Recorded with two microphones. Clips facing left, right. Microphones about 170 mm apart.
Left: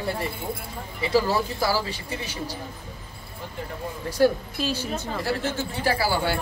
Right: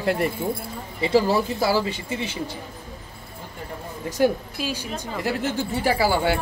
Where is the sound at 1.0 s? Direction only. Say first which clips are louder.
Right 3 dB; 25° right (ahead or behind).